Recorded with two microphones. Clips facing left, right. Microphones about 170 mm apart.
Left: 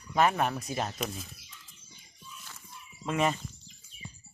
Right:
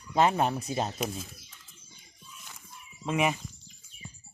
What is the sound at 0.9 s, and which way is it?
Speech, centre (ahead or behind).